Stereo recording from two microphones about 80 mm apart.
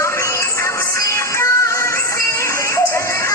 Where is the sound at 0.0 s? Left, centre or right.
Left.